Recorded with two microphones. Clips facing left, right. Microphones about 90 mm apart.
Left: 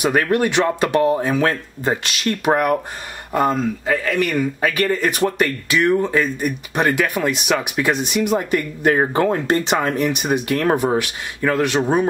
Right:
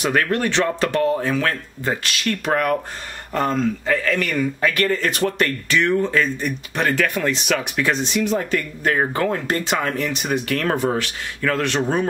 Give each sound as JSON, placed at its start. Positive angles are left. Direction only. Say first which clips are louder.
{"t": 0.0, "sound": "a man's voice", "louder": "left 3 dB", "side_deg": 15}